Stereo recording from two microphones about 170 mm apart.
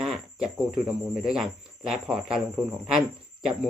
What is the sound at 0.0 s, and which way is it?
Cricket, 5° right (ahead or behind).